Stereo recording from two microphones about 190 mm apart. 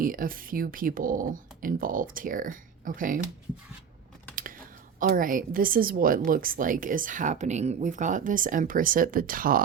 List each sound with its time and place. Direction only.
0.0 s a woman's voice: 45° right (ahead or behind)
4.9 s a woman's voice: 45° right (ahead or behind)